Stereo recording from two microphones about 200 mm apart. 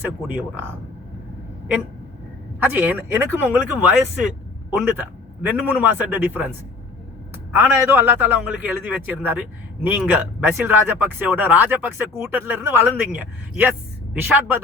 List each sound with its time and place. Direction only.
0.0 s speech: 10° right (ahead or behind)
2.6 s speech: 10° right (ahead or behind)
7.5 s speech: 10° right (ahead or behind)